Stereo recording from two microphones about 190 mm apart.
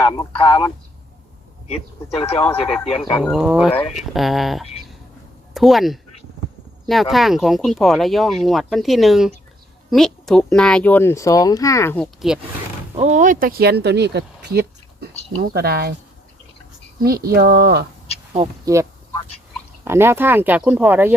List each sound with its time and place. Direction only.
0.0 s speech: 20° left (ahead or behind)
2.4 s speech: 5° left (ahead or behind)
3.7 s speech: 30° left (ahead or behind)
3.9 s speech: centre (ahead or behind)
12.3 s speech: centre (ahead or behind)
12.9 s speech: 35° right (ahead or behind); by 16.0 s 55° right (ahead or behind)
17.0 s speech: 55° right (ahead or behind)
18.3 s speech: 15° right (ahead or behind)